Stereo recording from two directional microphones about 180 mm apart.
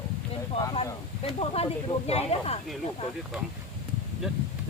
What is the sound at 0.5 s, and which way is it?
Speech, 30° left (ahead or behind).